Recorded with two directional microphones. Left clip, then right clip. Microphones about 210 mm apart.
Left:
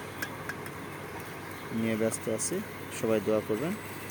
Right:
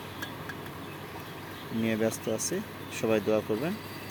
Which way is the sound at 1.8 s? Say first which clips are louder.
Right 1 dB; centre (ahead or behind).